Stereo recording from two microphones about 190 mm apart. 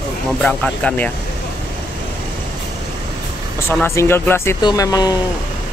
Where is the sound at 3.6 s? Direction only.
15° left (ahead or behind).